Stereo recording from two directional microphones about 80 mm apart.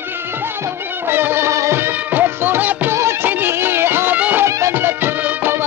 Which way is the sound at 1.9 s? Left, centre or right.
Right.